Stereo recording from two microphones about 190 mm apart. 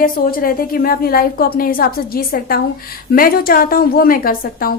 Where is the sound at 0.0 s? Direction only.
50° left (ahead or behind).